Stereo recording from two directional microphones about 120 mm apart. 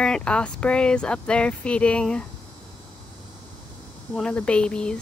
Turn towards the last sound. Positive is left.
turn(degrees=10)  # may be behind; listen again after turning